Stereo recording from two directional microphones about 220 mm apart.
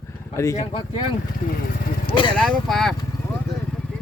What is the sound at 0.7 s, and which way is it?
Speech, 25° left (ahead or behind).